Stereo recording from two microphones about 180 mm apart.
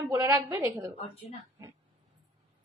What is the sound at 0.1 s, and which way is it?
Speech, 15° right (ahead or behind).